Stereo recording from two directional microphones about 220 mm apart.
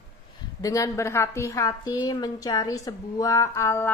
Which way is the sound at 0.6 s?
15° left (ahead or behind).